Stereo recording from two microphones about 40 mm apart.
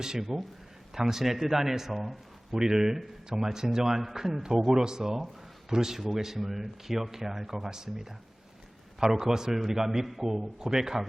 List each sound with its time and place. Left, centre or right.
0.0 s a man's voice: centre
9.0 s a man's voice: centre